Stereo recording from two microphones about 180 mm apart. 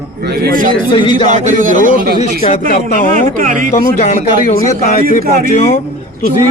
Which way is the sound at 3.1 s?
50° right (ahead or behind).